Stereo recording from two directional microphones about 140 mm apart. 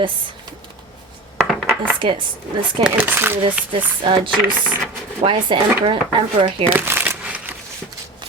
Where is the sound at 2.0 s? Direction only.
35° right (ahead or behind).